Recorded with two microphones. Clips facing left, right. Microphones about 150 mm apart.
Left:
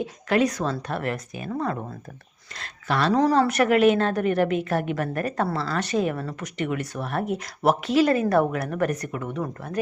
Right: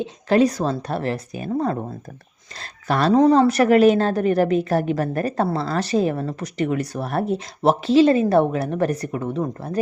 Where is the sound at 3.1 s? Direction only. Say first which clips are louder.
Right 6 dB; 25° right (ahead or behind).